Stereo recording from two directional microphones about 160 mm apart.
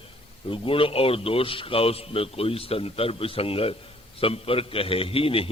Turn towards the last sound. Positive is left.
turn(degrees=35)  # may be behind; listen again after turning